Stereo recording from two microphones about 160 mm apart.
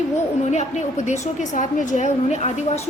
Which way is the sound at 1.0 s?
50° left (ahead or behind).